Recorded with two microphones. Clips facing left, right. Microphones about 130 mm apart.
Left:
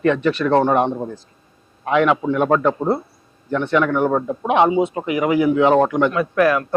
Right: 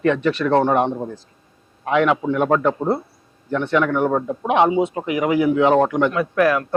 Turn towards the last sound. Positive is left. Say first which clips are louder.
# left 1 dB
turn(degrees=20)  # may be behind; listen again after turning